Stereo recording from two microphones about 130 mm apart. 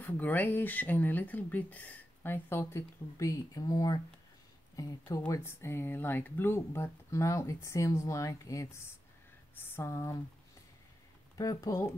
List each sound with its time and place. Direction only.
0.0 s speech: 15° left (ahead or behind)
11.3 s speech: 25° left (ahead or behind)